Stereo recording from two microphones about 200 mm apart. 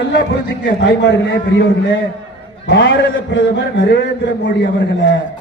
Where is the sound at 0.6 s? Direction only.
65° left (ahead or behind).